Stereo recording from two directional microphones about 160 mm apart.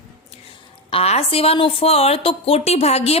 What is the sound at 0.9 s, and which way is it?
A woman's voice, 40° left (ahead or behind).